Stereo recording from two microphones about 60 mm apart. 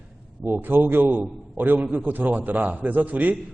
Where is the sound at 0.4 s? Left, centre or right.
Right.